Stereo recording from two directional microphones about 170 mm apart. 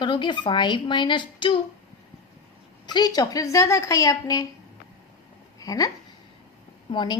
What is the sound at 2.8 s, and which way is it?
A woman's voice, 25° left (ahead or behind).